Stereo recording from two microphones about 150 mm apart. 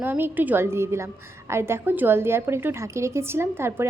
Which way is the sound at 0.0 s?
15° right (ahead or behind).